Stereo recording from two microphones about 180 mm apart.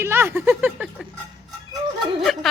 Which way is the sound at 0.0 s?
15° right (ahead or behind).